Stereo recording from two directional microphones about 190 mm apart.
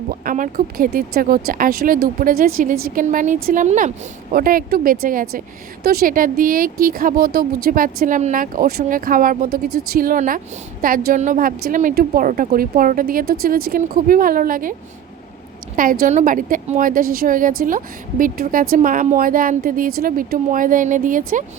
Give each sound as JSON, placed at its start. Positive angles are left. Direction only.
{"t": 0.1, "sound": "a woman's voice", "side_deg": -45}